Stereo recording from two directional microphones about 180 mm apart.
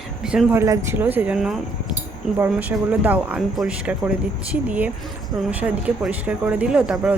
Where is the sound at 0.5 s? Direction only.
15° right (ahead or behind).